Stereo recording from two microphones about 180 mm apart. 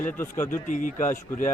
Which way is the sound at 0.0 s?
15° left (ahead or behind).